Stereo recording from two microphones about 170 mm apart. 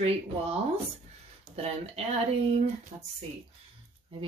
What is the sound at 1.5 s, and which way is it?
Speech, 35° right (ahead or behind).